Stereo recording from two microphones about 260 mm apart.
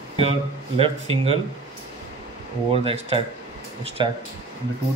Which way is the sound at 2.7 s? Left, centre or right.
Right.